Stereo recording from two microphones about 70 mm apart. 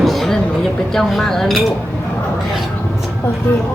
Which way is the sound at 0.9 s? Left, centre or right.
Centre.